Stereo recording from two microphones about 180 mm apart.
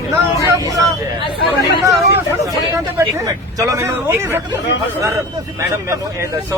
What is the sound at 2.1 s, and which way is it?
A man's voice, 15° right (ahead or behind).